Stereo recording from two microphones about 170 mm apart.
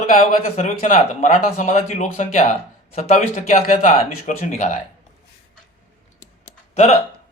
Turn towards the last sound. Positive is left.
turn(degrees=45)  # may be behind; listen again after turning